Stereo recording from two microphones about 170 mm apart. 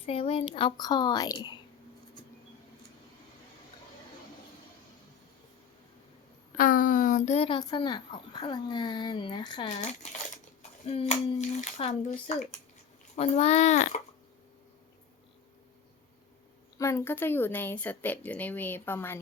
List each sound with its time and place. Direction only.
0.0 s a woman's voice: 35° left (ahead or behind)
6.6 s speech: 50° left (ahead or behind); by 9.6 s 30° left (ahead or behind)
9.6 s speech: 45° left (ahead or behind)
16.7 s speech: 15° left (ahead or behind)